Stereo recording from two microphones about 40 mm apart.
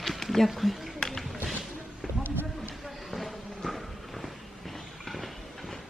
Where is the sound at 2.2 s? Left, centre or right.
Right.